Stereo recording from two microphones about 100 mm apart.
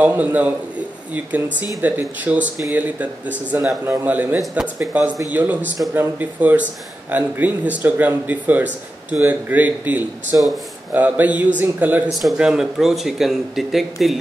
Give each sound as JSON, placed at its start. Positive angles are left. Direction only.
{"t": 0.0, "sound": "speech", "side_deg": -15}
{"t": 12.1, "sound": "speech", "side_deg": 0}